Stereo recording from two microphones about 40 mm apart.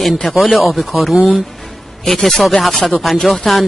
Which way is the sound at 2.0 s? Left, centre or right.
Centre.